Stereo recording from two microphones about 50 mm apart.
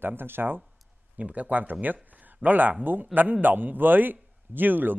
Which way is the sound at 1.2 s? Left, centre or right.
Right.